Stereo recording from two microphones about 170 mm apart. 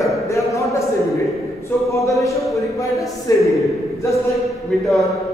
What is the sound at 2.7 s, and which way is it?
Speech, 20° left (ahead or behind).